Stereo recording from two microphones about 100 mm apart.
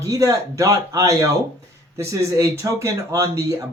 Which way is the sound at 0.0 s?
35° right (ahead or behind).